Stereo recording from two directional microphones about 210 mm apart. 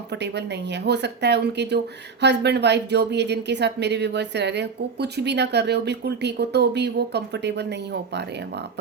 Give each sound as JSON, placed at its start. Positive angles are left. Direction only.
{"t": 0.1, "sound": "speech", "side_deg": -55}